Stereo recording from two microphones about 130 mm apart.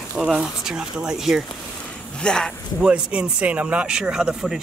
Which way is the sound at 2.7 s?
10° right (ahead or behind).